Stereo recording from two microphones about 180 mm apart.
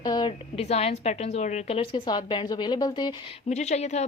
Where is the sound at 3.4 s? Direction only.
40° left (ahead or behind).